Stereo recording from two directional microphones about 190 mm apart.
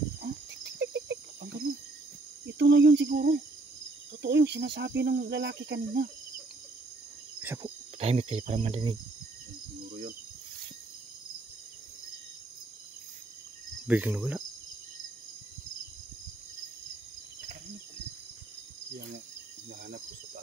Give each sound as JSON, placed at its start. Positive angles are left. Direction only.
{"t": 0.2, "sound": "cricket", "side_deg": -60}
{"t": 2.4, "sound": "speech", "side_deg": -65}
{"t": 4.2, "sound": "speech", "side_deg": -60}
{"t": 7.6, "sound": "speech", "side_deg": -30}
{"t": 9.8, "sound": "a sound", "side_deg": -50}
{"t": 13.8, "sound": "speech", "side_deg": -10}